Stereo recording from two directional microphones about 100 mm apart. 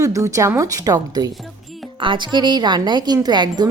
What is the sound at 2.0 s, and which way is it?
A woman's voice, 55° right (ahead or behind).